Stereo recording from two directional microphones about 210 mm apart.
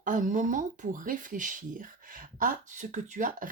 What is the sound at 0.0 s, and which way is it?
Speech, 35° right (ahead or behind).